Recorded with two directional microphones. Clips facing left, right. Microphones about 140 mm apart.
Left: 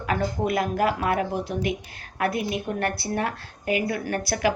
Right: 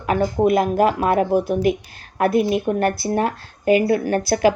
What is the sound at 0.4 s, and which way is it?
Speech, 25° right (ahead or behind).